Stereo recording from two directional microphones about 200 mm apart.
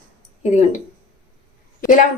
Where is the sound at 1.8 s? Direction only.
40° left (ahead or behind).